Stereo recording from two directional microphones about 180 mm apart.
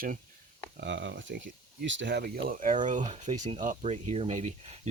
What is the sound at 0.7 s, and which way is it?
Speech, 85° right.